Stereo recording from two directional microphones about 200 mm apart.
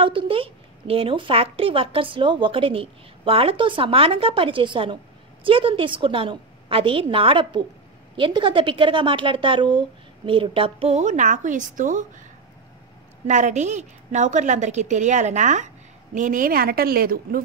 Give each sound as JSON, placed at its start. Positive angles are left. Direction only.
{"t": 0.0, "sound": "a woman's voice", "side_deg": -25}
{"t": 13.3, "sound": "a woman's voice", "side_deg": -35}